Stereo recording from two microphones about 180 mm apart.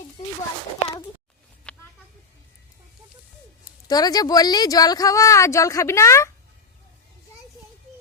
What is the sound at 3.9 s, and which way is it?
Speech, 20° left (ahead or behind).